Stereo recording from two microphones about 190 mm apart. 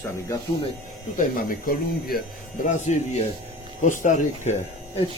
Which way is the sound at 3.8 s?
40° left (ahead or behind).